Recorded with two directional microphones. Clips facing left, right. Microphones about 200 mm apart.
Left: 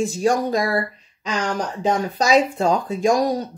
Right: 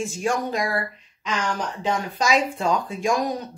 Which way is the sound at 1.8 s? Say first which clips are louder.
Left 6 dB; 40° left (ahead or behind).